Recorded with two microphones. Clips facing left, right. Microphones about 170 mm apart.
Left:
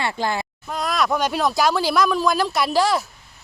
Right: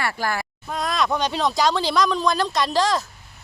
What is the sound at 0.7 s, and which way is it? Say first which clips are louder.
Speech: left 1 dB; centre (ahead or behind).